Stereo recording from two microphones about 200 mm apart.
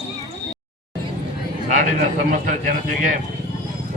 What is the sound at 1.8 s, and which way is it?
A man's voice, 40° right (ahead or behind).